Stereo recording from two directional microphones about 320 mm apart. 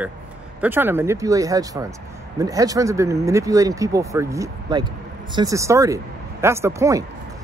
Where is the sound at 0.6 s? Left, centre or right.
Centre.